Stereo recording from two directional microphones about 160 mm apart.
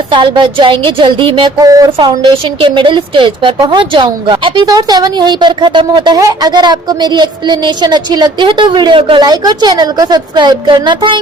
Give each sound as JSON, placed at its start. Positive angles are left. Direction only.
{"t": 0.1, "sound": "a woman's voice", "side_deg": -30}